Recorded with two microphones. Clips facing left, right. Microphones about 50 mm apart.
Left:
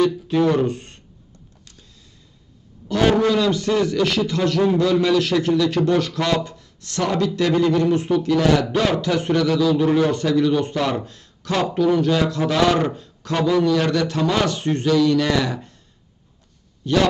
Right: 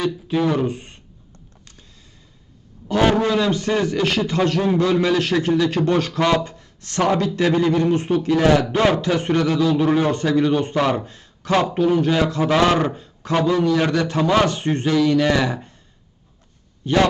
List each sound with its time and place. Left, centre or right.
0.0 s speech: centre
3.2 s a man's voice: right
16.8 s a man's voice: right